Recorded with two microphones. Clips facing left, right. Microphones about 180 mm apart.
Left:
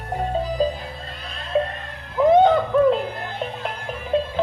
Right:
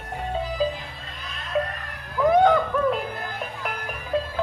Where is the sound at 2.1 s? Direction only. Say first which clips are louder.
Left 3 dB; 25° left (ahead or behind).